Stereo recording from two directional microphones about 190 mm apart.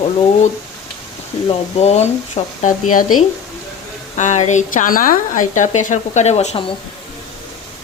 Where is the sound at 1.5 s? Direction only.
35° left (ahead or behind).